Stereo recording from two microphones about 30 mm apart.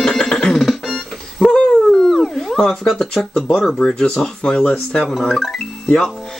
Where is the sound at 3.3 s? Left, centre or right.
Centre.